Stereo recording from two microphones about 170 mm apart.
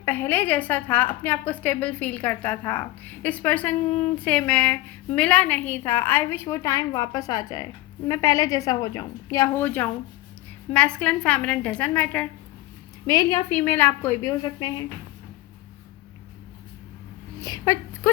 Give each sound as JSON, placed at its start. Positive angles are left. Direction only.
{"t": 0.0, "sound": "a woman's voice", "side_deg": 10}
{"t": 13.1, "sound": "a woman's voice", "side_deg": 20}
{"t": 17.4, "sound": "speech", "side_deg": 25}
{"t": 18.0, "sound": "dog", "side_deg": 10}